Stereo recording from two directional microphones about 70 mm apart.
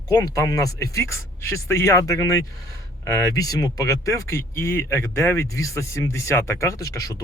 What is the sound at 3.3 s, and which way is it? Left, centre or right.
Speech, left.